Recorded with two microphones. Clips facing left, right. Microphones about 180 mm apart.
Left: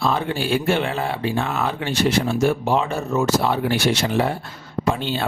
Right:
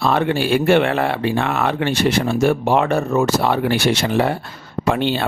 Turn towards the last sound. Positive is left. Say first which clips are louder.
# right 4 dB
turn(degrees=-70)  # may be behind; listen again after turning